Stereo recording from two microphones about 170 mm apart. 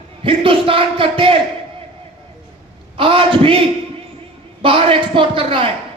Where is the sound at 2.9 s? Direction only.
30° right (ahead or behind).